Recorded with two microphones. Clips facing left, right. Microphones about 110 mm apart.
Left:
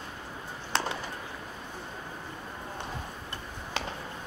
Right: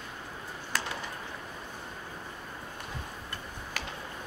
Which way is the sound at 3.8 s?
25° left (ahead or behind).